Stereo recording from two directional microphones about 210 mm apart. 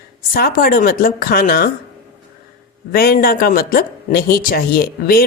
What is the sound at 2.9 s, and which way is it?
Speech, 45° left (ahead or behind).